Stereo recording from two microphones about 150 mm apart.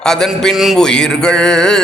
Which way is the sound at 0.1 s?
5° left (ahead or behind).